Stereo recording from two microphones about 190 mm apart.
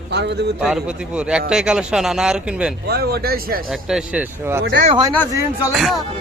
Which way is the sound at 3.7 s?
5° right (ahead or behind).